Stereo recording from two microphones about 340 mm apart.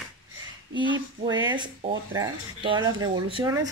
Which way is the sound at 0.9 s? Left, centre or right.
Centre.